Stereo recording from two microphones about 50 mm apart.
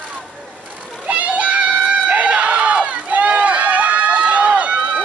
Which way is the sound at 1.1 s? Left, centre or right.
Right.